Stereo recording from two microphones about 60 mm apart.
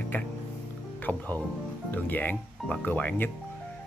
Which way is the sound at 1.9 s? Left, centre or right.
Left.